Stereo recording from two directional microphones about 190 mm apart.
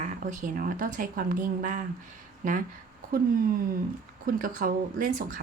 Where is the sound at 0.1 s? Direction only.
45° right (ahead or behind).